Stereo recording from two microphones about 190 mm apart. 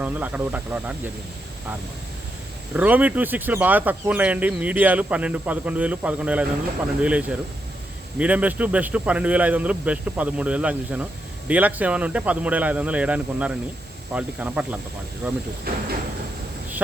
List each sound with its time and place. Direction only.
0.0 s speech: 10° right (ahead or behind)
2.7 s speech: 10° right (ahead or behind)
15.7 s speech: 50° right (ahead or behind)